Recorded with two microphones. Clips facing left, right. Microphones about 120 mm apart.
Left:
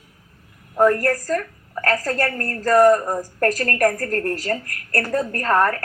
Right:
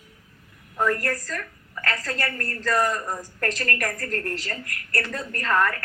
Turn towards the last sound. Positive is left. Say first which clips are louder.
# left 5 dB
turn(degrees=40)  # may be behind; listen again after turning